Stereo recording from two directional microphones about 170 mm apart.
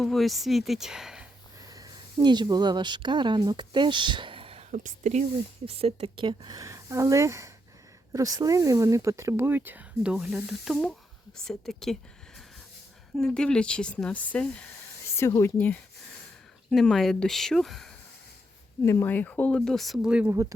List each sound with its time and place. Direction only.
0.0 s a woman's voice: centre (ahead or behind)
1.6 s speech: 20° right (ahead or behind)
4.7 s speech: 45° right (ahead or behind)
5.6 s a woman's voice: 35° right (ahead or behind); by 11.9 s centre (ahead or behind)
13.1 s a woman's voice: 5° left (ahead or behind)
18.9 s a woman's voice: 15° left (ahead or behind); by 20.3 s 5° right (ahead or behind)